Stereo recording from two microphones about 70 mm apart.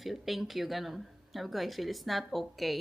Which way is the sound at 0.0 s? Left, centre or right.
Centre.